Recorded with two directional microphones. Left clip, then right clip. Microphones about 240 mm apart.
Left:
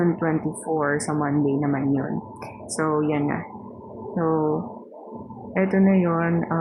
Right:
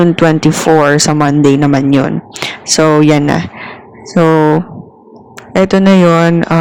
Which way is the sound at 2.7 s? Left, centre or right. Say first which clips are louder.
Right 15 dB; right.